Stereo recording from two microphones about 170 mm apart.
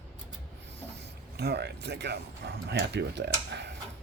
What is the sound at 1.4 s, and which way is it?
Speech, 70° right (ahead or behind).